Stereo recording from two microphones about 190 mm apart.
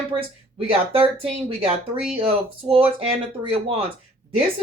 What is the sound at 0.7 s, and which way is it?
Speech, 30° right (ahead or behind).